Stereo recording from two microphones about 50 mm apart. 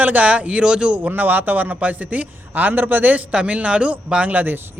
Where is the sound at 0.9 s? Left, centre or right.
Right.